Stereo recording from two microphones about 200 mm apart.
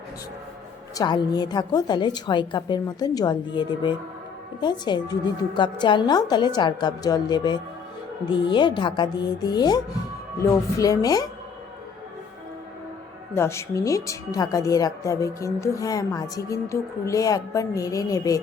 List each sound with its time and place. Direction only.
0.9 s a woman's voice: 20° left (ahead or behind)
13.3 s speech: 15° left (ahead or behind)